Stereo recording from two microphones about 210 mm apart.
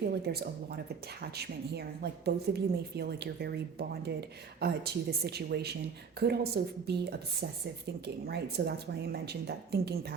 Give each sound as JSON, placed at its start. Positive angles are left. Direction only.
{"t": 0.1, "sound": "a woman's voice", "side_deg": -50}